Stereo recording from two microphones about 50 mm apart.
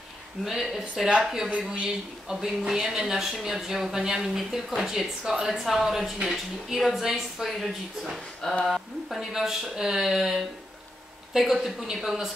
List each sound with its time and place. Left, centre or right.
0.5 s a woman's voice: centre
8.4 s speech: centre
8.6 s a woman's voice: centre